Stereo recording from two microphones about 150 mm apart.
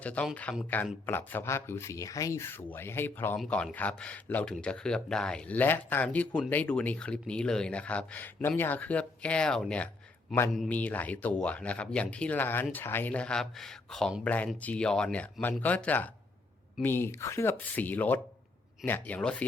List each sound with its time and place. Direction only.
0.0 s speech: 10° left (ahead or behind)